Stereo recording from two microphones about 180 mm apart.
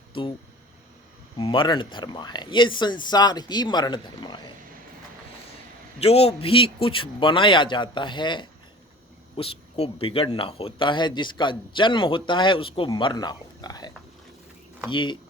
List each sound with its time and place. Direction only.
0.1 s speech: 30° left (ahead or behind)
1.4 s speech: 25° left (ahead or behind)
6.0 s speech: 35° left (ahead or behind)